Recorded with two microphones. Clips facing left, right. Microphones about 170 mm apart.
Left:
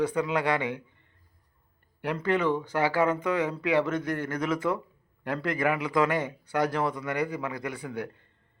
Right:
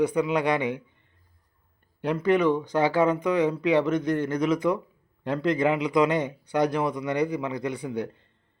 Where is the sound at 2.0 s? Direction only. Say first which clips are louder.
Right 4 dB; 15° right (ahead or behind).